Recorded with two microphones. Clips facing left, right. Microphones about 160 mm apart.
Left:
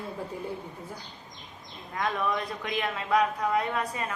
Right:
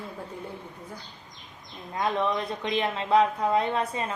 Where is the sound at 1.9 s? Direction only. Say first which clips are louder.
Right 3 dB; 25° right (ahead or behind).